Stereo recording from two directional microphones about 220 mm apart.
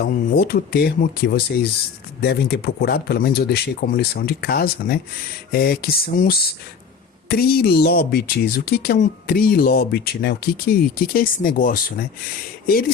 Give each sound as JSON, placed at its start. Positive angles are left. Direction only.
{"t": 0.0, "sound": "speech", "side_deg": 45}